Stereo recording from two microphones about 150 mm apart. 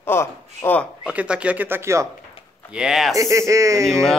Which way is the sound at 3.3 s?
20° right (ahead or behind).